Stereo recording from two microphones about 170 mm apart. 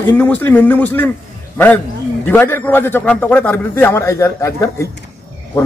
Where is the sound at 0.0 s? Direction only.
10° left (ahead or behind).